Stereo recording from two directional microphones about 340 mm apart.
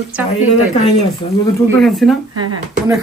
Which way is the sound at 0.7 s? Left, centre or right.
Centre.